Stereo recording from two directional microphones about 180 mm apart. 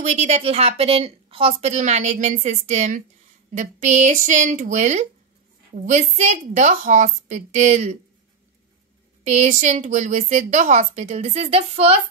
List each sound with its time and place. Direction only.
0.0 s a woman's voice: 40° right (ahead or behind)
9.2 s a woman's voice: 40° right (ahead or behind)